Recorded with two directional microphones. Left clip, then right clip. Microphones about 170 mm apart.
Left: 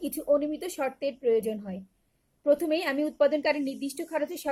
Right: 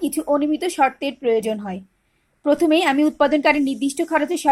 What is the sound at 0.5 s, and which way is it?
Speech, 5° left (ahead or behind).